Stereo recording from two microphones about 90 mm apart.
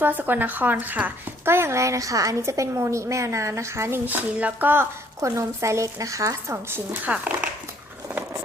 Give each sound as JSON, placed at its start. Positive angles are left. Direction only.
{"t": 0.0, "sound": "speech", "side_deg": -20}
{"t": 4.0, "sound": "a sound", "side_deg": -20}
{"t": 5.2, "sound": "speech", "side_deg": -35}
{"t": 7.0, "sound": "speech", "side_deg": -15}